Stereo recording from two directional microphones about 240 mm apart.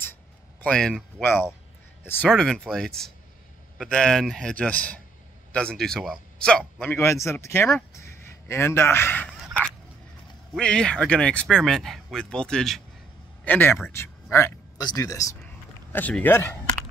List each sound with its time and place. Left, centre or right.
0.6 s speech: centre
7.9 s a sound: centre
10.5 s speech: centre